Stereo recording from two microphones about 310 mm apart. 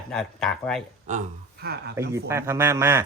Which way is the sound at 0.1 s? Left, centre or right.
Centre.